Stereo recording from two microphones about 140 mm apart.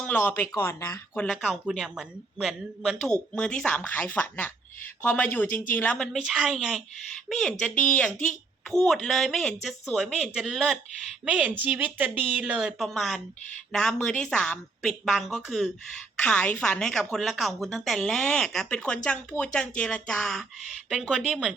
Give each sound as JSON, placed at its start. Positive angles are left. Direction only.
{"t": 0.0, "sound": "speech", "side_deg": 10}
{"t": 1.1, "sound": "speech", "side_deg": 5}
{"t": 6.1, "sound": "a woman's voice", "side_deg": -5}